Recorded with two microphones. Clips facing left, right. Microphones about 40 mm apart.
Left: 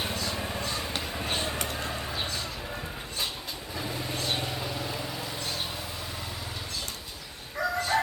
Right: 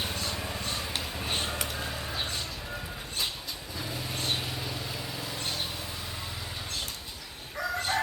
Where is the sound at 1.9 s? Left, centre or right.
Centre.